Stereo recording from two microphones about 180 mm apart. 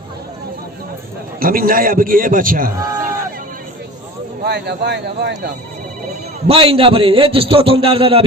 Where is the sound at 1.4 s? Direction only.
50° right (ahead or behind).